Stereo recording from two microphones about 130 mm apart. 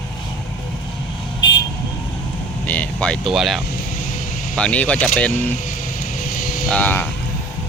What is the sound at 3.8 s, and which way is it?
Vehicle, 85° left.